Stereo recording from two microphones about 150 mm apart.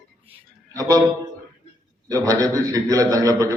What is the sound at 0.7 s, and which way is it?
Speech, 25° right (ahead or behind).